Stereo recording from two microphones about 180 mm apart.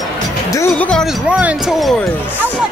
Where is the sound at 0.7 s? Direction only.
5° left (ahead or behind).